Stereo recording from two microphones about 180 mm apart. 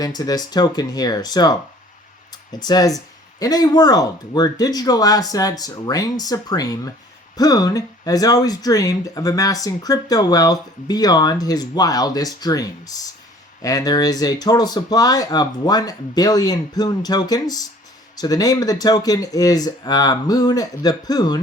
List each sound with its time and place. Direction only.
0.0 s speech: 20° left (ahead or behind)